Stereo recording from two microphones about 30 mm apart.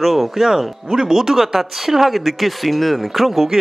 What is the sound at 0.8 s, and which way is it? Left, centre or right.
Speech, centre.